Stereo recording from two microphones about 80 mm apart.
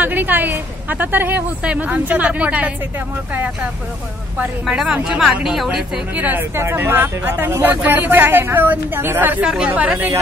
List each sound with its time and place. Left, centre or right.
0.0 s a woman's voice: right
4.6 s a woman's voice: centre
6.1 s a woman's voice: centre
6.5 s a woman's voice: right
9.4 s speech: centre